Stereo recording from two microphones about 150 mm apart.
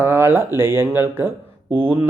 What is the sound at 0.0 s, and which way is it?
Speech, 15° right (ahead or behind).